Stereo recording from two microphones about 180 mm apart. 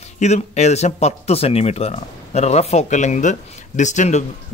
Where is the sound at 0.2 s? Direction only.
40° left (ahead or behind).